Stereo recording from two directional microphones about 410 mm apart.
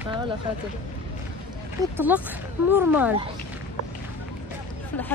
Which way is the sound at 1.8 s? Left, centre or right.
Centre.